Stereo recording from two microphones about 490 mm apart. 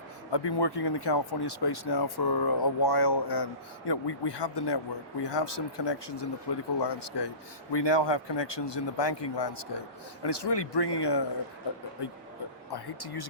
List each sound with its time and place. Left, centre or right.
0.3 s speech: left
12.7 s speech: left